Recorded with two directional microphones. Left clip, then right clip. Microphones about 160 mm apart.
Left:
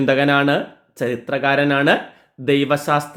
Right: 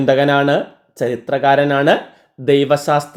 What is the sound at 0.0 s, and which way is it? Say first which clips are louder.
Speech: right 3 dB; 30° right (ahead or behind).